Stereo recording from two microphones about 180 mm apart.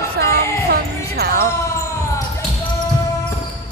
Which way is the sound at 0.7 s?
60° right (ahead or behind).